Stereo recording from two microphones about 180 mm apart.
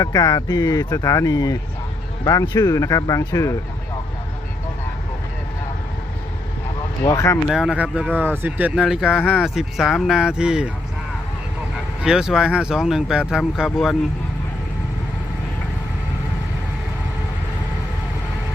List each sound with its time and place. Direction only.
0.0 s speech: 20° left (ahead or behind)
7.0 s speech: 20° left (ahead or behind)
7.4 s speech: centre (ahead or behind)
12.0 s speech: 5° right (ahead or behind)